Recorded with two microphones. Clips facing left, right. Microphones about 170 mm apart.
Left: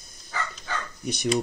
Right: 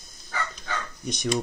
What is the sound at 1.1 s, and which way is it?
Speech, 5° left (ahead or behind).